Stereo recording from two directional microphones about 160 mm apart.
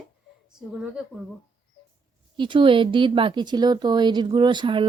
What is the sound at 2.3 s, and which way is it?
A woman's voice, 30° right (ahead or behind).